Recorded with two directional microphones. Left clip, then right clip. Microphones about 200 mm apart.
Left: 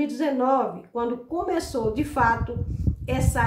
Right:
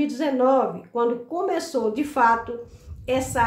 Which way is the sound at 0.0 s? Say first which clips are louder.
Right 3 dB; 5° right (ahead or behind).